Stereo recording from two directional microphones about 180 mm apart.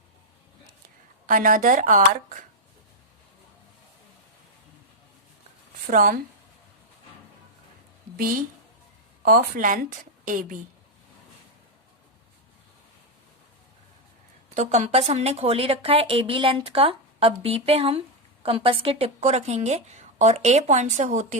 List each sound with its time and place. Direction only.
1.3 s a woman's voice: 50° right (ahead or behind)
5.9 s a woman's voice: 50° right (ahead or behind)
9.2 s a woman's voice: 50° right (ahead or behind)
14.5 s a woman's voice: 45° right (ahead or behind)